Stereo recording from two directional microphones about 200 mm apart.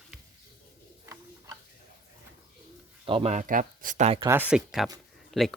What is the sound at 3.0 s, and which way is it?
Speech, 30° right (ahead or behind).